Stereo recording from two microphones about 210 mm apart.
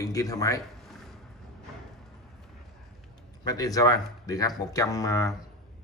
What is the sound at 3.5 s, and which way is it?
Speech, 15° left (ahead or behind).